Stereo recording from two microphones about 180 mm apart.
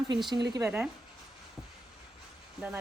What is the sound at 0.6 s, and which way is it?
Speech, 10° right (ahead or behind).